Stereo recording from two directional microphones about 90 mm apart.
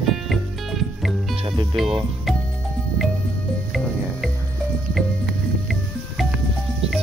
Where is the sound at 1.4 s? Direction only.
55° right (ahead or behind).